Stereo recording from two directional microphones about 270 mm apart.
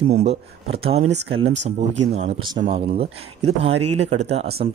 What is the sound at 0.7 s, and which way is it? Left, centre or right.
Speech, right.